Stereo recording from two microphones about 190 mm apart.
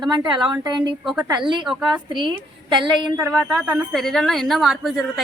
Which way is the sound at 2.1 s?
25° right (ahead or behind).